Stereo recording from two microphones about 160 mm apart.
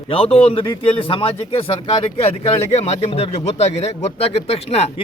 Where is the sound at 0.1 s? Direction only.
35° left (ahead or behind).